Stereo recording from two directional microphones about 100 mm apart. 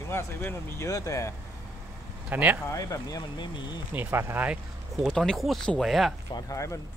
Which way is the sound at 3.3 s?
50° left (ahead or behind).